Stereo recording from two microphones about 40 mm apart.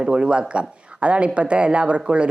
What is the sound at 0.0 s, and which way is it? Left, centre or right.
Speech, right.